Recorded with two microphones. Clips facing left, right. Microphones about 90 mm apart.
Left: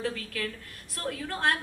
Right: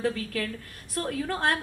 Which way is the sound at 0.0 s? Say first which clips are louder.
Right 4 dB; 40° right (ahead or behind).